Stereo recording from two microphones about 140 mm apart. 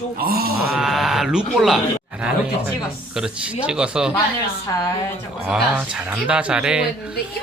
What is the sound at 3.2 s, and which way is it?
Speech, 5° right (ahead or behind).